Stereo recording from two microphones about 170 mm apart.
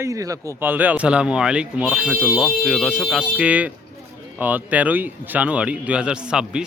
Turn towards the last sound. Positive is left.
turn(degrees=-5)  # may be behind; listen again after turning